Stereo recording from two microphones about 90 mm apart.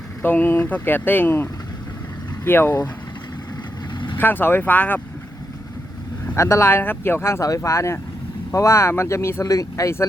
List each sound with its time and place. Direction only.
0.2 s speech: 20° left (ahead or behind)
3.9 s vehicle: 60° left (ahead or behind)
4.2 s speech: 20° left (ahead or behind)
6.3 s speech: 35° left (ahead or behind)